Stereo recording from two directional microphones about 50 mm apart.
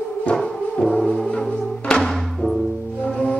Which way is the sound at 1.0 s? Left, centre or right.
Centre.